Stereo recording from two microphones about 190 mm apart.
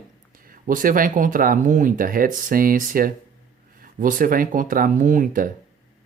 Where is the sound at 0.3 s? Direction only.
50° right (ahead or behind).